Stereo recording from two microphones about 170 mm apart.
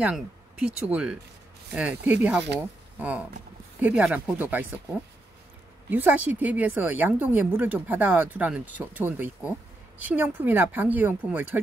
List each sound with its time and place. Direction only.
0.0 s speech: 5° right (ahead or behind)
5.9 s speech: 10° right (ahead or behind)